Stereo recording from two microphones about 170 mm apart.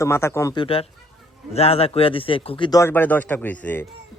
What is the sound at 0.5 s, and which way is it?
Speech, 30° left (ahead or behind).